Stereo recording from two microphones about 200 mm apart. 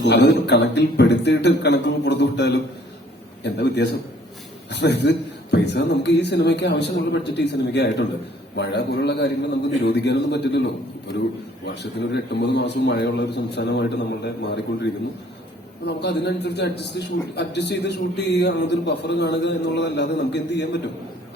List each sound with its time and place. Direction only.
0.0 s a man's voice: 60° left (ahead or behind)
15.8 s a man's voice: 55° left (ahead or behind)